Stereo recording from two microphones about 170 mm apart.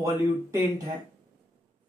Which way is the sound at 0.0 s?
15° right (ahead or behind).